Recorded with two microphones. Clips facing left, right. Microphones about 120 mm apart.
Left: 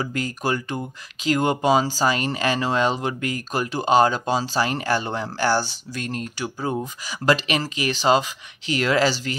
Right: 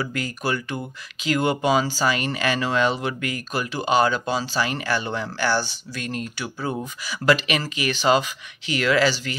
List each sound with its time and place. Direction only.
0.0 s speech: 35° left (ahead or behind)